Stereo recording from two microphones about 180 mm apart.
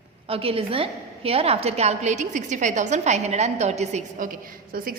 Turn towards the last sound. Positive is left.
turn(degrees=-50)  # may be behind; listen again after turning